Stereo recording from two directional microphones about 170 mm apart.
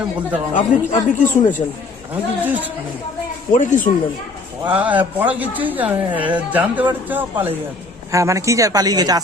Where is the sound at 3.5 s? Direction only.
50° left (ahead or behind).